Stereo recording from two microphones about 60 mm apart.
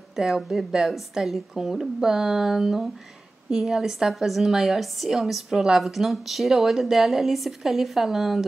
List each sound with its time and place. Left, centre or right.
0.1 s a woman's voice: centre